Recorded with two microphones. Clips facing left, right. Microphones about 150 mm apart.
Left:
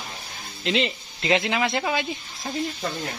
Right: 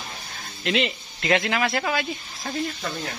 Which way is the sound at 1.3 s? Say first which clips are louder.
Even; 20° left (ahead or behind).